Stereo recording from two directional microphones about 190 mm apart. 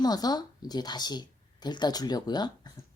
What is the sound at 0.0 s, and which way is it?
Speech, 20° left (ahead or behind).